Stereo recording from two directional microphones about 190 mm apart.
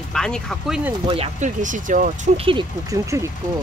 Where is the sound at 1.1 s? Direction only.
35° right (ahead or behind).